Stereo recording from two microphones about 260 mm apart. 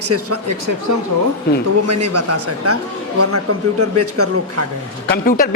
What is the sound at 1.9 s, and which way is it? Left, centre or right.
A man's voice, right.